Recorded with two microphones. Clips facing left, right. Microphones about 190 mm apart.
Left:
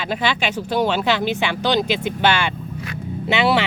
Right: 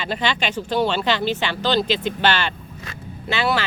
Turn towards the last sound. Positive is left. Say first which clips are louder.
# left 4 dB
turn(degrees=20)  # may be behind; listen again after turning